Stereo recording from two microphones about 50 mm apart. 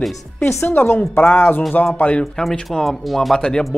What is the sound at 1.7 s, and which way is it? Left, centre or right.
Speech, left.